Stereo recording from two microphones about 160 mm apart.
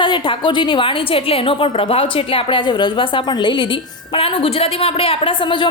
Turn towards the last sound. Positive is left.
turn(degrees=30)  # may be behind; listen again after turning